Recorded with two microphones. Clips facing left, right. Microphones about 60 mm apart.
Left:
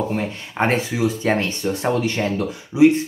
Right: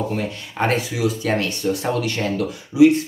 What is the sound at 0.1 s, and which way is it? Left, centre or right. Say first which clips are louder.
Speech: left 1 dB; left.